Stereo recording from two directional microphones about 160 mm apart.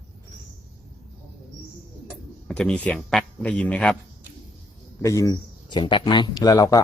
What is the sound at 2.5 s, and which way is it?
A man's voice, 5° left (ahead or behind).